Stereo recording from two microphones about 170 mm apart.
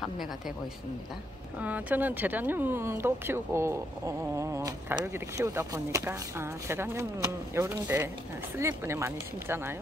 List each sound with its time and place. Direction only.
1.6 s speech: 10° right (ahead or behind)